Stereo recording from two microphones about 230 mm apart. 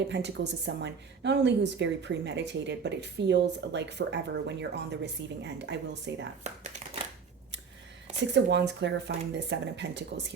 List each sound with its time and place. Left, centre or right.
0.1 s a woman's voice: right
8.3 s a woman's voice: right